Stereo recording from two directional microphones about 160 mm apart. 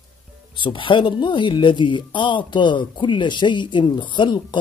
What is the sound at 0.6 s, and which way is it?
Speech, 30° left (ahead or behind).